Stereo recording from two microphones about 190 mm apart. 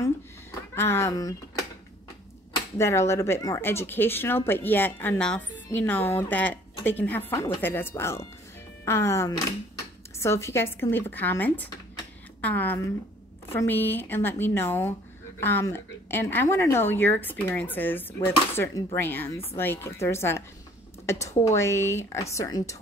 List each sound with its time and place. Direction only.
0.7 s speech: 15° left (ahead or behind)
2.8 s a woman's voice: 15° left (ahead or behind)